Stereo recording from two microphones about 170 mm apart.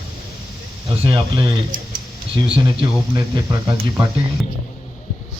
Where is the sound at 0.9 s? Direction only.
30° right (ahead or behind).